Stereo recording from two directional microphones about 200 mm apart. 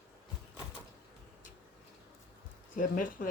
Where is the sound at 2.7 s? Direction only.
40° left (ahead or behind).